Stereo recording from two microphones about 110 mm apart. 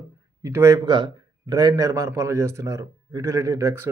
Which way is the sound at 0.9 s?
45° right (ahead or behind).